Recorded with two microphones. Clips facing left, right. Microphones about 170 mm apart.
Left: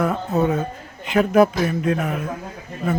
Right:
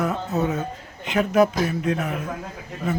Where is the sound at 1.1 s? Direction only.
55° left (ahead or behind).